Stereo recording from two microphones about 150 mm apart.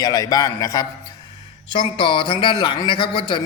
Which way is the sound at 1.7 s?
35° left (ahead or behind).